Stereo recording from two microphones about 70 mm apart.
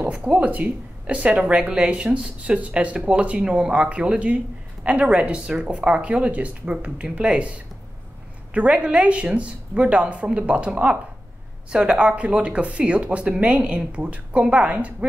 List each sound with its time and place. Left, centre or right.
0.0 s a woman's voice: centre